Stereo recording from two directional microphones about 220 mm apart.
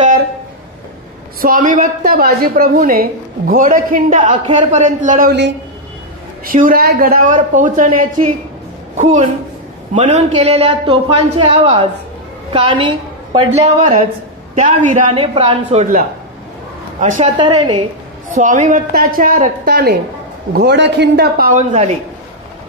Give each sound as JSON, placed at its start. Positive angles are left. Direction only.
{"t": 1.4, "sound": "a woman's voice", "side_deg": -35}
{"t": 6.4, "sound": "a woman's voice", "side_deg": -40}
{"t": 17.4, "sound": "a man's voice", "side_deg": -20}
{"t": 18.3, "sound": "a woman's voice", "side_deg": -35}